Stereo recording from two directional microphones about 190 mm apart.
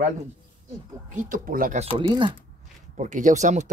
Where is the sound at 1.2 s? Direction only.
45° right (ahead or behind).